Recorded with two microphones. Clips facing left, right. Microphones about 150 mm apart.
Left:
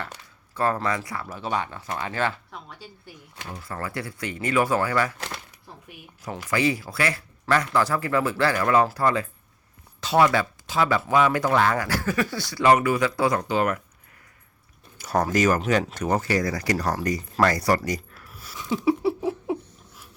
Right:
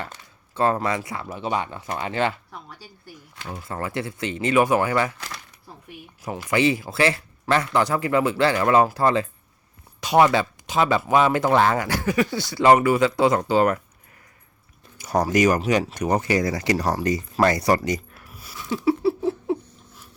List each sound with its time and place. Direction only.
0.5 s speech: 20° right (ahead or behind)
2.5 s a woman's voice: 5° right (ahead or behind)
3.5 s speech: 20° right (ahead or behind)
6.5 s speech: 25° right (ahead or behind)
14.9 s speech: 15° right (ahead or behind)
18.5 s a sound: 15° left (ahead or behind)